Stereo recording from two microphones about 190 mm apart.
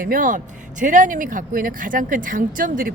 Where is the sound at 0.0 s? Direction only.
45° right (ahead or behind).